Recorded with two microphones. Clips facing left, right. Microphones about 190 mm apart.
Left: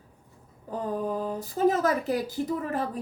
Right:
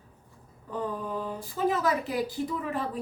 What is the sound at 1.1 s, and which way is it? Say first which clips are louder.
A woman's voice: left 4 dB; 40° left (ahead or behind).